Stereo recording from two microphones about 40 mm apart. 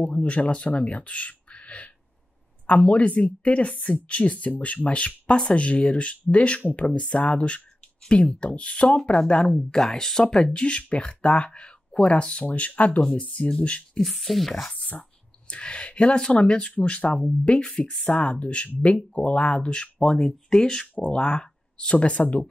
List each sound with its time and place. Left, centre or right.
0.0 s speech: left
2.9 s speech: left
6.6 s speech: left
7.2 s speech: left
9.4 s speech: centre; by 13.8 s left
13.9 s speech: centre
14.9 s a sound: left
15.5 s speech: left
20.2 s speech: centre